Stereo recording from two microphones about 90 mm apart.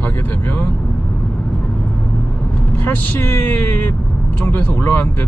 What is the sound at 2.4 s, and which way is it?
Speech, 15° left (ahead or behind).